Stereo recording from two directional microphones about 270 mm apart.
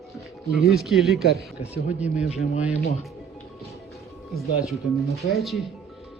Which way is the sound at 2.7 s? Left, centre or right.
Left.